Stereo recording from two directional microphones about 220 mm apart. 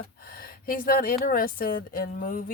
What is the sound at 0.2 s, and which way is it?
A woman's voice, 40° left (ahead or behind).